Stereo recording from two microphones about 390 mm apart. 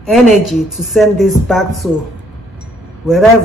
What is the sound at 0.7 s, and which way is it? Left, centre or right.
Speech, centre.